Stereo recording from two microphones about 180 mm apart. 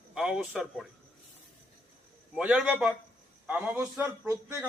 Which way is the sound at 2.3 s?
5° right (ahead or behind).